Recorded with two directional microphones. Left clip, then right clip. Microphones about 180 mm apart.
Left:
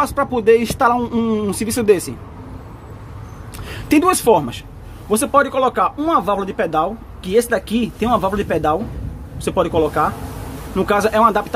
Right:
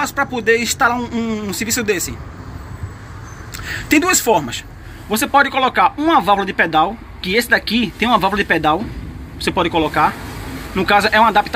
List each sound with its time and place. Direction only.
0.0 s speech: 25° left (ahead or behind)
3.5 s a woman's voice: 25° left (ahead or behind)
5.1 s speech: 10° left (ahead or behind)